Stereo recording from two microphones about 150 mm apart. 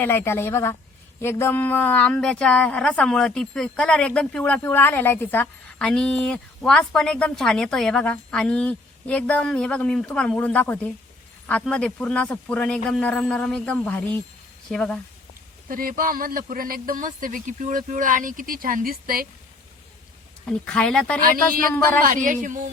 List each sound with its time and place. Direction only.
0.0 s speech: 15° left (ahead or behind)
15.7 s speech: 70° right (ahead or behind)
20.5 s speech: 5° left (ahead or behind)
21.2 s speech: 70° right (ahead or behind)